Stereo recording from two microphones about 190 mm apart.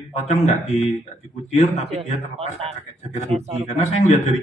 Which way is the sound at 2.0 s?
30° right (ahead or behind).